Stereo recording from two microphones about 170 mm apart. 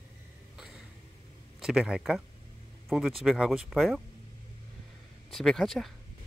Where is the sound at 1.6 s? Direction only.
5° right (ahead or behind).